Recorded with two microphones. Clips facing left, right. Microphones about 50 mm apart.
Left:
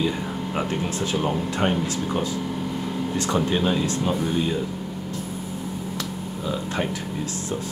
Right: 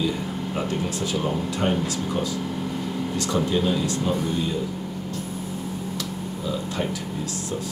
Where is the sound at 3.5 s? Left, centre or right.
Left.